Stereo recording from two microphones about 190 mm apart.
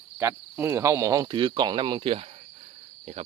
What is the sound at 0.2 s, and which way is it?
Cricket, 15° right (ahead or behind).